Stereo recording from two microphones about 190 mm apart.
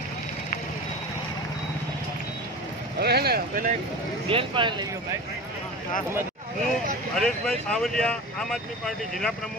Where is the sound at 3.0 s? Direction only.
55° right (ahead or behind).